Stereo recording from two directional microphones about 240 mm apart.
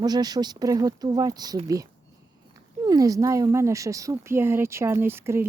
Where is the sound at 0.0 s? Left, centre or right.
Centre.